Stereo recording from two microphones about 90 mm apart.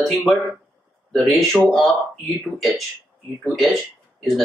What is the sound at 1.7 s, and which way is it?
Speech, centre (ahead or behind).